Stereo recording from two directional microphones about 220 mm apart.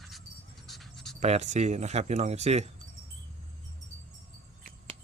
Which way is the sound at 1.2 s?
30° right (ahead or behind).